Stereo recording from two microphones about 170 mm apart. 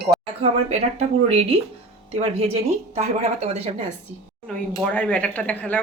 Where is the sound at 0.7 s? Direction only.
40° right (ahead or behind).